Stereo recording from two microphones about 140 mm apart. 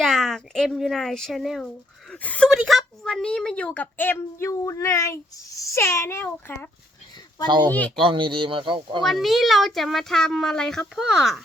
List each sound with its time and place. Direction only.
0.0 s a child's voice: centre (ahead or behind); by 6.7 s 20° left (ahead or behind)
7.4 s speech: 35° right (ahead or behind)
7.7 s a woman's voice: 10° left (ahead or behind)
7.9 s speech: 35° right (ahead or behind)
9.0 s speech: centre (ahead or behind)